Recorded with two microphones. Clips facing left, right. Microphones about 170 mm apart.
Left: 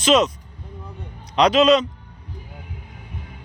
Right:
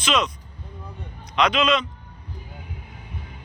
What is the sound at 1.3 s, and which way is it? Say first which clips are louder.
Speech: left 6 dB; 35° left (ahead or behind).